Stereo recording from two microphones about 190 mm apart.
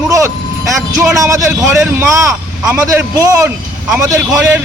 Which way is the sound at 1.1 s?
15° right (ahead or behind).